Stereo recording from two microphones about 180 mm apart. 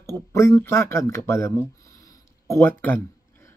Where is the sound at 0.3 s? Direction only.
15° left (ahead or behind).